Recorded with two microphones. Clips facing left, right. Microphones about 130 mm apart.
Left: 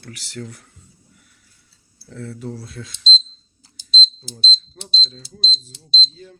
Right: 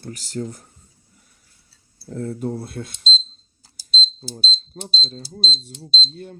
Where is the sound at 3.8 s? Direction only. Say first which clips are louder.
Left 2 dB; 35° right (ahead or behind).